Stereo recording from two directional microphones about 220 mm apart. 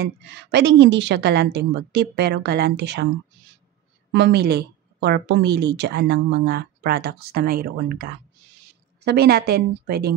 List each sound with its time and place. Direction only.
0.0 s speech: 50° right (ahead or behind)
4.1 s speech: 50° right (ahead or behind)